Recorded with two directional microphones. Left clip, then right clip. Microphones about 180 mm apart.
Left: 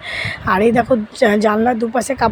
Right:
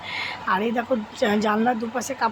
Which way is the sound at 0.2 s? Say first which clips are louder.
Left 8 dB; 30° left (ahead or behind).